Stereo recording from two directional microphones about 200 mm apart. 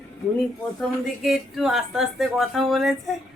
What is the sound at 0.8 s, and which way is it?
Speech, centre (ahead or behind).